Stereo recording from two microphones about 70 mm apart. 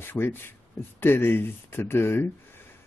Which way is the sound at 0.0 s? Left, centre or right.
Left.